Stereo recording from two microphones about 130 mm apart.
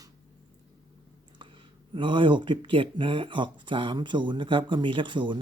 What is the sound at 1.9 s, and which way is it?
Speech, 40° right (ahead or behind).